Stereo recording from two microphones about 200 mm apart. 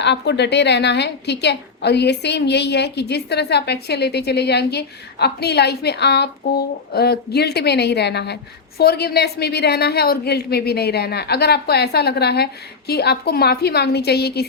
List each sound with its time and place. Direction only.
0.0 s a woman's voice: 60° left (ahead or behind)